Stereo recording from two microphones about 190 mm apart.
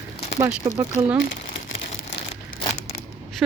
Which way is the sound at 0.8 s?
15° right (ahead or behind).